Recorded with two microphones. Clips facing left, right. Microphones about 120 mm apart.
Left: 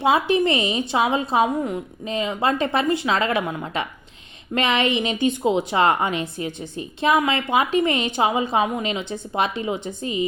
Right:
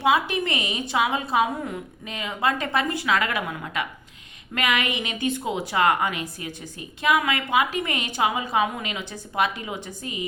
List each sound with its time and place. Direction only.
0.0 s a woman's voice: 30° left (ahead or behind)